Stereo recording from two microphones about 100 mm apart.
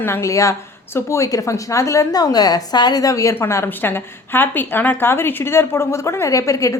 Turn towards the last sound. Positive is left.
turn(degrees=30)  # may be behind; listen again after turning